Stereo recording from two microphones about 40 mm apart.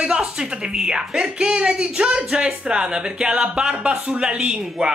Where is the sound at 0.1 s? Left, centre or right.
Right.